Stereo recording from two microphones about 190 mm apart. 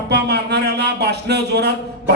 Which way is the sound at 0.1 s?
60° right (ahead or behind).